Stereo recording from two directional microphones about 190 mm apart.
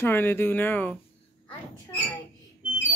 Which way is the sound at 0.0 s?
10° left (ahead or behind).